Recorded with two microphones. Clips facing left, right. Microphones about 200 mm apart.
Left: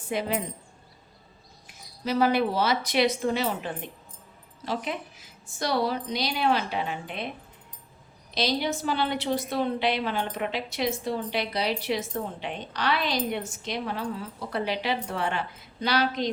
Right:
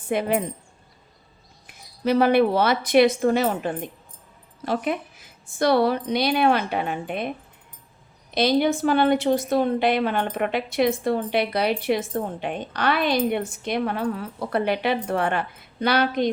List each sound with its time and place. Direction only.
0.1 s a woman's voice: 60° right (ahead or behind)
1.6 s a woman's voice: 60° right (ahead or behind)
8.4 s a woman's voice: 55° right (ahead or behind)